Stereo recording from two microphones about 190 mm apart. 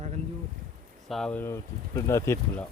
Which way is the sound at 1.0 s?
Centre (ahead or behind).